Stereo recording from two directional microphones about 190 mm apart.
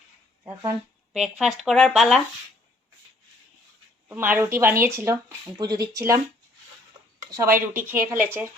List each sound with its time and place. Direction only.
0.4 s speech: 15° right (ahead or behind)
1.1 s speech: 5° right (ahead or behind)
4.1 s speech: 10° right (ahead or behind)
7.2 s speech: 15° right (ahead or behind)